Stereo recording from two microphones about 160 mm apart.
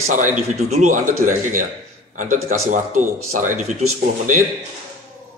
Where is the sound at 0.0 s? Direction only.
50° right (ahead or behind).